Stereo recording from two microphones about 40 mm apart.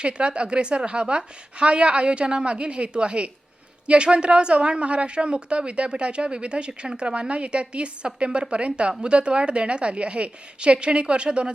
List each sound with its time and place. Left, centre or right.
0.0 s a woman's voice: right